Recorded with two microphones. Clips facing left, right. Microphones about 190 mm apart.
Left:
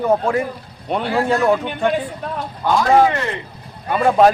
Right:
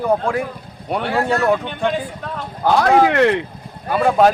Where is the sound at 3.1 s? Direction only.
70° right (ahead or behind).